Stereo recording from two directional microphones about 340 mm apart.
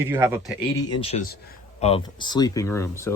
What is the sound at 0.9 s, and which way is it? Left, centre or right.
Speech, centre.